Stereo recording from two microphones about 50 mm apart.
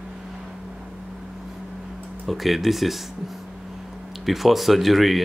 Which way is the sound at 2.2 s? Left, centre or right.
Centre.